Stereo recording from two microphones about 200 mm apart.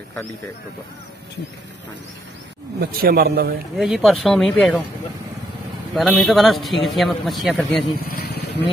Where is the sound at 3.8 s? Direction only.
Centre (ahead or behind).